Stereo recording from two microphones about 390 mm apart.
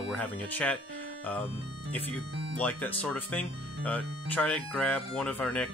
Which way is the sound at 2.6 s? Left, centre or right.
Centre.